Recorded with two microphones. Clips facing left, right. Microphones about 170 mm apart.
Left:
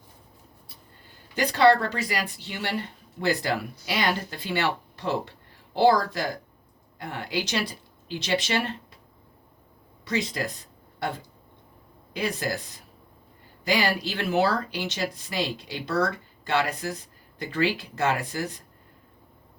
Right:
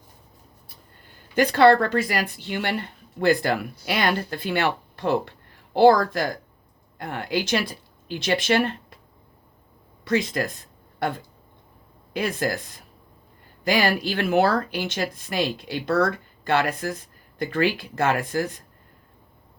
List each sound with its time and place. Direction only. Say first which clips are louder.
1.4 s speech: right 4 dB; 55° right (ahead or behind)
10.0 s speech: right 5 dB; 55° right (ahead or behind)
12.1 s speech: right 3 dB; 50° right (ahead or behind)